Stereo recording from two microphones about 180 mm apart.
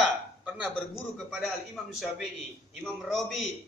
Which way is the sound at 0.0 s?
5° right (ahead or behind).